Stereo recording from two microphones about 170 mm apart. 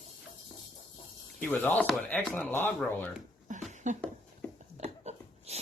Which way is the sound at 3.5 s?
45° right (ahead or behind).